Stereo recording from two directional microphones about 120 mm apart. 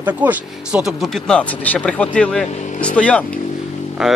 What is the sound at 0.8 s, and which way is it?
Speech, centre (ahead or behind).